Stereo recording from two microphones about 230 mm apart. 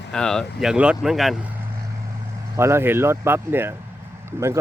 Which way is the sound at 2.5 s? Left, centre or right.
Centre.